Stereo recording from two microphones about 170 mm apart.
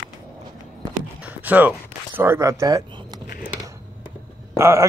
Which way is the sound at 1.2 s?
10° right (ahead or behind).